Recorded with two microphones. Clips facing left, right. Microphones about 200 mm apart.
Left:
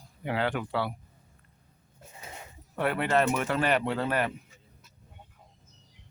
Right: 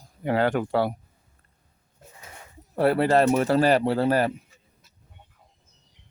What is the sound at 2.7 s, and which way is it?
Speech, 35° right (ahead or behind).